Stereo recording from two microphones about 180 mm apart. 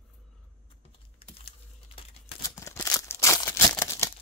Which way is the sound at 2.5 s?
15° left (ahead or behind).